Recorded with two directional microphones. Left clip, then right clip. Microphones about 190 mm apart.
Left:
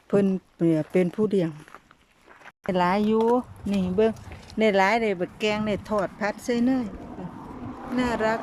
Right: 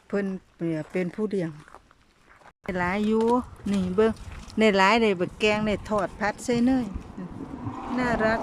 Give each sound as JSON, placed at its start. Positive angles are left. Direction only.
{"t": 0.1, "sound": "speech", "side_deg": 15}
{"t": 2.6, "sound": "speech", "side_deg": 5}
{"t": 7.9, "sound": "speech", "side_deg": 5}